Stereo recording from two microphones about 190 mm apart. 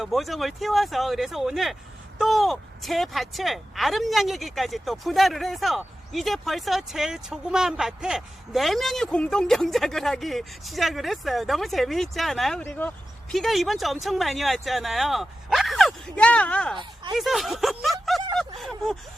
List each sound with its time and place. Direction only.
0.0 s speech: centre (ahead or behind)
16.7 s speech: 25° right (ahead or behind)
17.2 s speech: centre (ahead or behind)
18.3 s a sound: centre (ahead or behind)